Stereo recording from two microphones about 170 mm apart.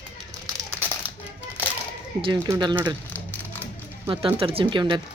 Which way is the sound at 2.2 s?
25° right (ahead or behind).